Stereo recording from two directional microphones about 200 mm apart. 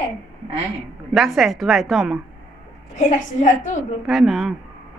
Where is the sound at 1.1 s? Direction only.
Centre (ahead or behind).